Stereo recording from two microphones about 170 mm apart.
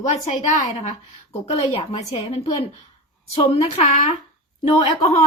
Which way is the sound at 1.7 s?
35° left (ahead or behind).